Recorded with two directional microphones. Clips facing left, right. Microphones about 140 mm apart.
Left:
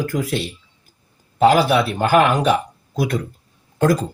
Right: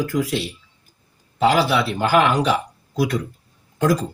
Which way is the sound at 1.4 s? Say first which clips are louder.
Left 3 dB; 50° left (ahead or behind).